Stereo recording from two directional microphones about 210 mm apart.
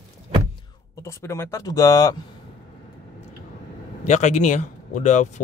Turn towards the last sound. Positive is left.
turn(degrees=35)  # may be behind; listen again after turning